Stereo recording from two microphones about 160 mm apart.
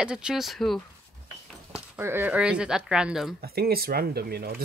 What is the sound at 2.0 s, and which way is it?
Speech, 15° right (ahead or behind).